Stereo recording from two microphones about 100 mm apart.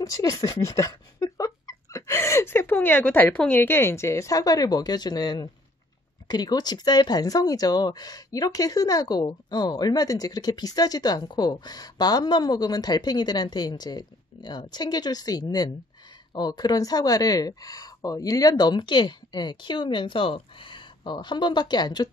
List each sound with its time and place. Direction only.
0.0 s speech: 35° left (ahead or behind)